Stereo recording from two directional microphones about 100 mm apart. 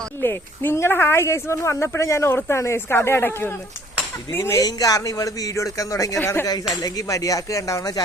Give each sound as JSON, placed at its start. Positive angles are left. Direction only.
{"t": 0.2, "sound": "speech", "side_deg": 25}